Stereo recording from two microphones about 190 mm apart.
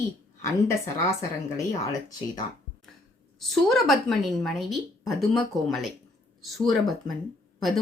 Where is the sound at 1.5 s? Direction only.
15° left (ahead or behind).